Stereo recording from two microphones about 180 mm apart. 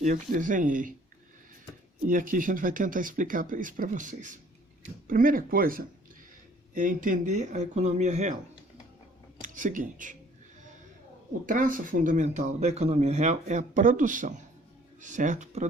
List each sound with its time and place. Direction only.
0.0 s speech: 45° right (ahead or behind)
2.0 s speech: 50° right (ahead or behind)
9.4 s speech: 45° right (ahead or behind)
11.4 s speech: 50° right (ahead or behind)